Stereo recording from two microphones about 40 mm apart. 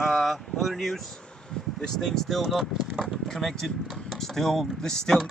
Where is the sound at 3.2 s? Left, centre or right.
Centre.